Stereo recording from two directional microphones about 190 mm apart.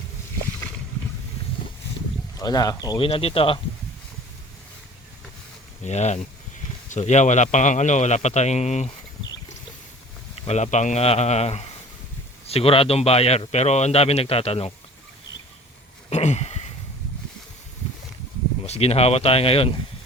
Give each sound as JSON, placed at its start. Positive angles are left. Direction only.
{"t": 2.4, "sound": "speech", "side_deg": 20}
{"t": 5.8, "sound": "a man's voice", "side_deg": 35}
{"t": 10.4, "sound": "a man's voice", "side_deg": 35}
{"t": 16.0, "sound": "a sound", "side_deg": 35}
{"t": 18.6, "sound": "a man's voice", "side_deg": 35}